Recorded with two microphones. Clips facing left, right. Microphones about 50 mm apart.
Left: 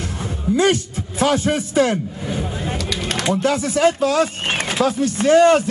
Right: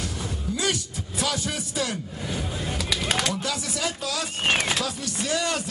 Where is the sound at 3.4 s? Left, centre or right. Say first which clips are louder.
Left 12 dB; left.